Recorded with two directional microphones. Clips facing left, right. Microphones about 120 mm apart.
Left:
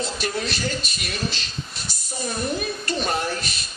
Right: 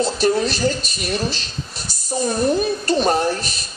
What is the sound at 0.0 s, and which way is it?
A woman's voice, 35° right (ahead or behind).